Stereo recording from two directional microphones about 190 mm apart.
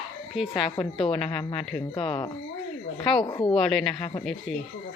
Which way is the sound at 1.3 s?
30° left (ahead or behind).